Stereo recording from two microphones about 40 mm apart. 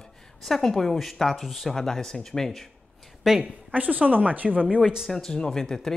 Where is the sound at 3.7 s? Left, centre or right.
Right.